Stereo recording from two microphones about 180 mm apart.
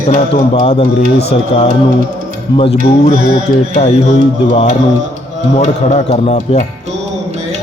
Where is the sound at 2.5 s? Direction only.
30° left (ahead or behind).